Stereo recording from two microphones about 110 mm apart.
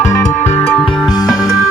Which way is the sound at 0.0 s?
25° left (ahead or behind).